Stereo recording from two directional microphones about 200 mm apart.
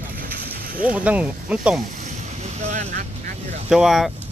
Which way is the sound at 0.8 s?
5° right (ahead or behind).